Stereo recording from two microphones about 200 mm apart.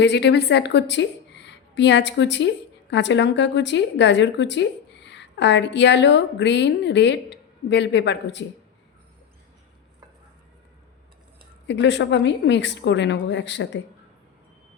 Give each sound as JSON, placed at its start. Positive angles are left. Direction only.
{"t": 0.0, "sound": "a woman's voice", "side_deg": 55}
{"t": 11.7, "sound": "a woman's voice", "side_deg": 60}